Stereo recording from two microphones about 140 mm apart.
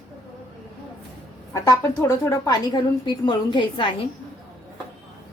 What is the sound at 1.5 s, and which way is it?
A woman's voice, 20° left (ahead or behind).